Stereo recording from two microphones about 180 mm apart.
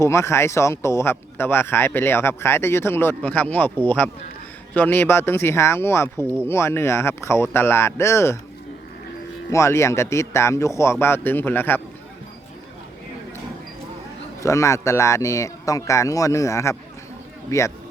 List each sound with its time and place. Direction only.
0.0 s speech: 15° left (ahead or behind)
9.5 s speech: 15° left (ahead or behind)
14.4 s speech: 15° left (ahead or behind)